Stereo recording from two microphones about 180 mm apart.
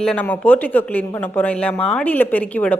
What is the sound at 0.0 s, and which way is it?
A woman's voice, 5° left (ahead or behind).